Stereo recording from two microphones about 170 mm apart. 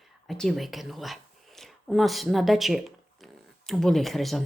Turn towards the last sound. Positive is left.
turn(degrees=0)  # may be behind; listen again after turning